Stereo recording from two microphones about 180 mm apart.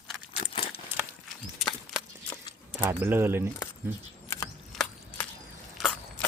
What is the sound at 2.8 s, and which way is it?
Speech, 10° right (ahead or behind).